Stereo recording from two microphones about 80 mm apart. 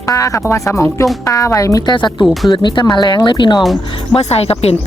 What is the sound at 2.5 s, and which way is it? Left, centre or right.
Speech, left.